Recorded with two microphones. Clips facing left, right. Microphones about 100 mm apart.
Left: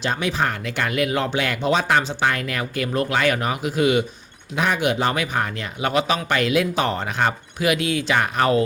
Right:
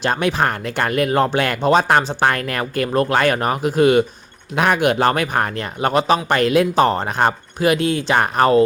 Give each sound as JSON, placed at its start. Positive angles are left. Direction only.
{"t": 0.0, "sound": "speech", "side_deg": -55}
{"t": 4.5, "sound": "speech", "side_deg": -60}